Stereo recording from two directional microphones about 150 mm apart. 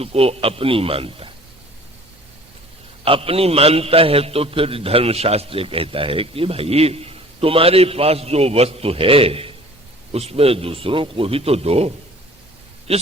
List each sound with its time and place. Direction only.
0.0 s a man's voice: 40° right (ahead or behind)
3.0 s a man's voice: 40° right (ahead or behind)
12.9 s a man's voice: 45° right (ahead or behind)